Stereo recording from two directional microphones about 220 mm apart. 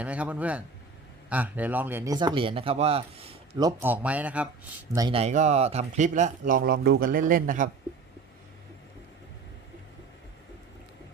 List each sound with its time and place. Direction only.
0.0 s speech: 5° right (ahead or behind)
4.9 s speech: 20° right (ahead or behind); by 7.7 s 35° right (ahead or behind)